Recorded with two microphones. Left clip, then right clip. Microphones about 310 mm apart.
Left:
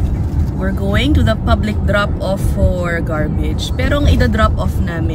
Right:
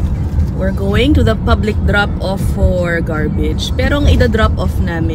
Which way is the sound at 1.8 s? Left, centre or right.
Centre.